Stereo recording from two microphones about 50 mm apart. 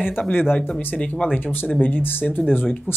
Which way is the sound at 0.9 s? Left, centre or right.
Left.